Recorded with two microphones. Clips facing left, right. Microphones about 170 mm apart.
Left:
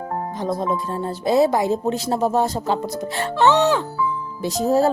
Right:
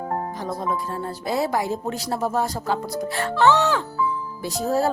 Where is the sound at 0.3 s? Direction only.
20° left (ahead or behind).